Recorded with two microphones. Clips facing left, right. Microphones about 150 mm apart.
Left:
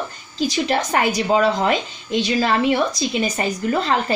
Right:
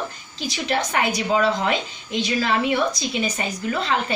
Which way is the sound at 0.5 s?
35° left (ahead or behind).